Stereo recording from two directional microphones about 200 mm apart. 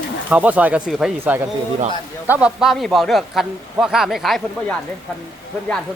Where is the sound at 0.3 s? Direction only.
5° right (ahead or behind).